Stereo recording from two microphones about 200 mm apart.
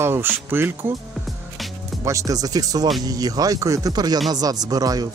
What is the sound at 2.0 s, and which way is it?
Speech, 15° right (ahead or behind).